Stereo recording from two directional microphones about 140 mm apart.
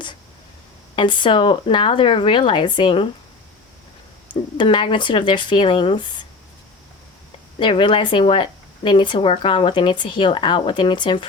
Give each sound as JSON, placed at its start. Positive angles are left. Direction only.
{"t": 0.9, "sound": "speech", "side_deg": 35}
{"t": 4.3, "sound": "speech", "side_deg": 35}
{"t": 7.6, "sound": "speech", "side_deg": 35}